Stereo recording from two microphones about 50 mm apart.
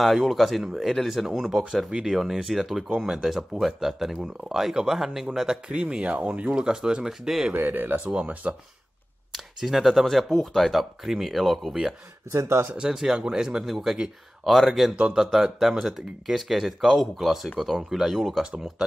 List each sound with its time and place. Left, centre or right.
0.0 s speech: centre
1.9 s speech: centre
5.7 s speech: right
7.5 s speech: right
8.0 s speech: right
9.3 s speech: centre
12.3 s speech: right
12.7 s speech: centre
13.7 s speech: centre